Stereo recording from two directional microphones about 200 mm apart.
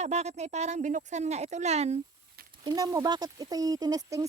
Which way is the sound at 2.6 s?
20° right (ahead or behind).